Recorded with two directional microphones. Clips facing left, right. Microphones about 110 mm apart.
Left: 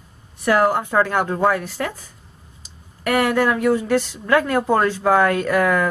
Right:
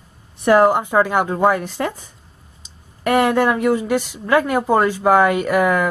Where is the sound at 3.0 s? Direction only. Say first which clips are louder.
Right 2 dB; 25° right (ahead or behind).